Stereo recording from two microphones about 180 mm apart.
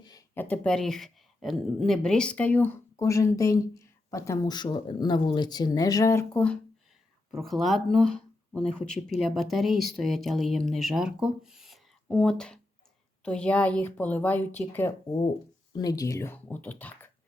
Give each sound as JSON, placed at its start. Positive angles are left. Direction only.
{"t": 0.0, "sound": "a sound", "side_deg": 20}
{"t": 0.3, "sound": "speech", "side_deg": 10}
{"t": 9.0, "sound": "speech", "side_deg": 0}